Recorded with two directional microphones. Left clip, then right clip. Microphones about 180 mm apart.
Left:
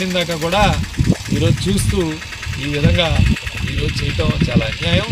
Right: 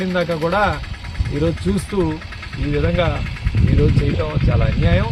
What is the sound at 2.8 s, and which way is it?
Speech, 5° right (ahead or behind).